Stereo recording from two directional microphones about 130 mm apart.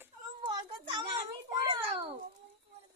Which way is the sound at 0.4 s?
30° right (ahead or behind).